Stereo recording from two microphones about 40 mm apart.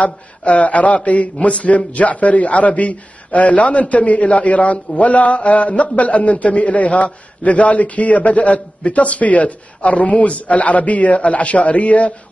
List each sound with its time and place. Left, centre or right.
0.5 s a man's voice: left